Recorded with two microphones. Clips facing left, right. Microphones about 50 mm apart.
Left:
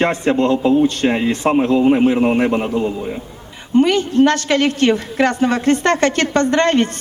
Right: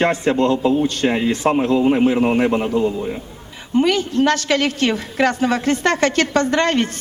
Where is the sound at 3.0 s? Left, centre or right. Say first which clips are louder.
Even; centre.